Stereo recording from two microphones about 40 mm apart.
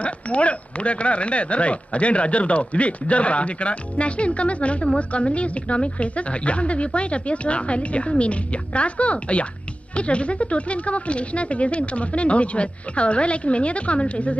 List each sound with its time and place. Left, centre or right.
0.0 s speech: left